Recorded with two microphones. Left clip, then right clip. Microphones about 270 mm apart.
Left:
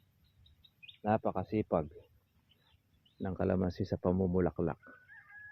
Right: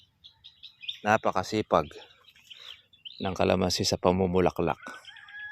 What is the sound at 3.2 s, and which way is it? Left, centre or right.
Speech, right.